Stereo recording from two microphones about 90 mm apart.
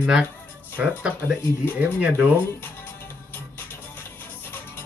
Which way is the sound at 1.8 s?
15° right (ahead or behind).